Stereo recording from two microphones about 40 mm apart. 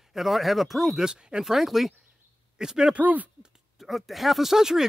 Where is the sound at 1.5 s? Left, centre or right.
Centre.